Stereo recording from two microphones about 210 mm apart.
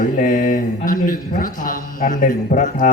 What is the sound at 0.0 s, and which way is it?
A man's voice, 40° left (ahead or behind).